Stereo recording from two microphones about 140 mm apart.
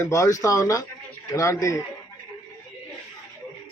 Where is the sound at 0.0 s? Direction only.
20° left (ahead or behind).